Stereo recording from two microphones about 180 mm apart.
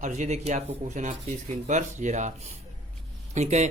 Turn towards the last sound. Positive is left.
turn(degrees=-40)  # may be behind; listen again after turning